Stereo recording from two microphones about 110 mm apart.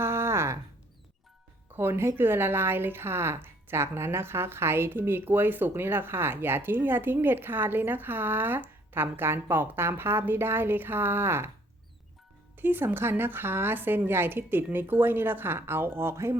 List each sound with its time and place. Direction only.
0.0 s a sound: 25° right (ahead or behind)
1.7 s a woman's voice: 20° right (ahead or behind)
12.5 s a woman's voice: 20° right (ahead or behind)